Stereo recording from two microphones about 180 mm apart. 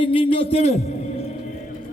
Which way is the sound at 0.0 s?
30° left (ahead or behind).